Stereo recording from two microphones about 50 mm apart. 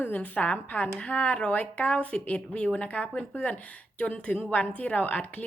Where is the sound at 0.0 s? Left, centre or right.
Left.